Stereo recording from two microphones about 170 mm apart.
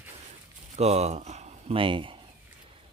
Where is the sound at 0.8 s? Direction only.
40° right (ahead or behind).